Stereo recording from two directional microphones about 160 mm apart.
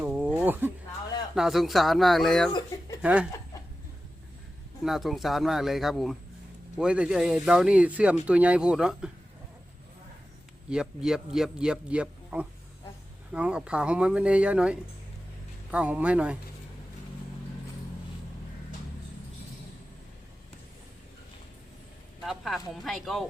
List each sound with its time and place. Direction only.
0.0 s a sound: 10° right (ahead or behind)
1.4 s a man's voice: centre (ahead or behind)
2.5 s a sound: 25° left (ahead or behind)
3.0 s speech: 5° right (ahead or behind)
4.8 s a man's voice: centre (ahead or behind)
10.7 s a man's voice: 5° right (ahead or behind)
22.2 s speech: centre (ahead or behind)